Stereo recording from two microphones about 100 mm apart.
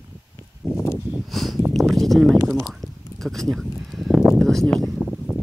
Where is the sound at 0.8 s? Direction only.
25° left (ahead or behind).